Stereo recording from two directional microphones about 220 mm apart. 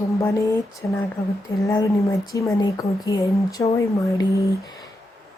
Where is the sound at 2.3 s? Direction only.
15° left (ahead or behind).